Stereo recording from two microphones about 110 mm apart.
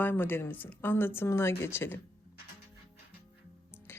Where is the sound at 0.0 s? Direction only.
20° left (ahead or behind).